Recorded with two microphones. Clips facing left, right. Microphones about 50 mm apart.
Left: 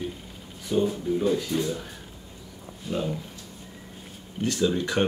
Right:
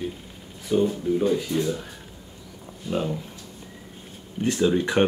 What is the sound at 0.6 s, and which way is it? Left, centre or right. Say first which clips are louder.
Speech: right 3 dB; centre.